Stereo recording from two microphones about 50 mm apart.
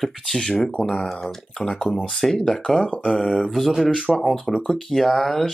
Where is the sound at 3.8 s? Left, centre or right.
Centre.